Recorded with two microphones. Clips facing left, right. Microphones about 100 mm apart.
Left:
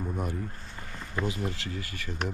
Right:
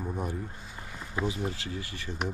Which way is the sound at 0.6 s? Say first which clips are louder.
Even; 10° right (ahead or behind).